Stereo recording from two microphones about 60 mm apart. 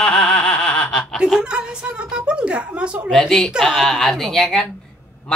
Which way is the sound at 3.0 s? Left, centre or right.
Centre.